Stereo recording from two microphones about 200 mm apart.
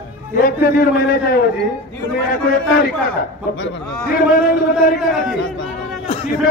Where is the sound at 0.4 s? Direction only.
45° left (ahead or behind).